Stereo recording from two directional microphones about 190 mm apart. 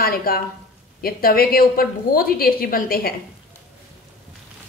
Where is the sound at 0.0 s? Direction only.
50° left (ahead or behind).